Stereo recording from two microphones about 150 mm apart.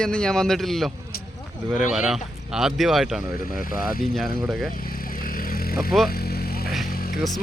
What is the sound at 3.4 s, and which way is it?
Speech, 70° left (ahead or behind).